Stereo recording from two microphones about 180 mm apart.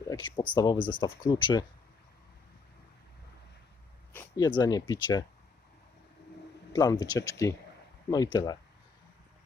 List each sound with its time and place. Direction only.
0.1 s speech: 25° left (ahead or behind)
4.4 s speech: 25° left (ahead or behind)
6.7 s speech: 20° left (ahead or behind)